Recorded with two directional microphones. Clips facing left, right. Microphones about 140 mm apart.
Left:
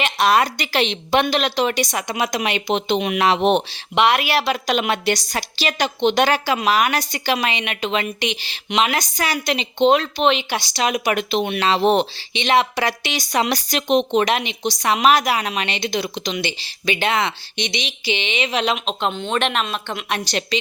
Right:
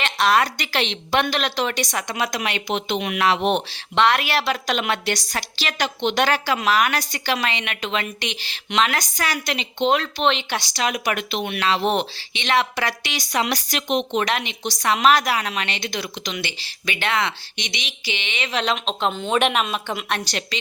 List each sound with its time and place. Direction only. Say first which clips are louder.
0.0 s speech: left 2 dB; 15° left (ahead or behind)
12.3 s speech: left 3 dB; 20° left (ahead or behind)
18.9 s a woman's voice: right 1 dB; centre (ahead or behind)
20.5 s speech: left 9 dB; 20° left (ahead or behind)